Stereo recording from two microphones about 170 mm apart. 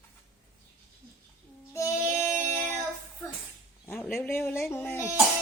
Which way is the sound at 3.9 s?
10° left (ahead or behind).